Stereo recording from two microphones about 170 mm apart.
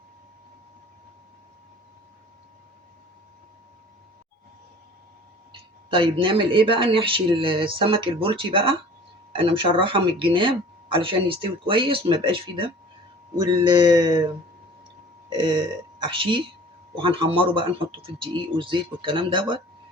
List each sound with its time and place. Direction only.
5.5 s speech: 30° right (ahead or behind)
15.3 s speech: 25° right (ahead or behind)